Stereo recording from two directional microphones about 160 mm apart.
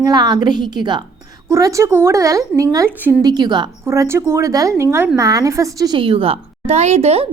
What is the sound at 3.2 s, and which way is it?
Speech, 25° right (ahead or behind).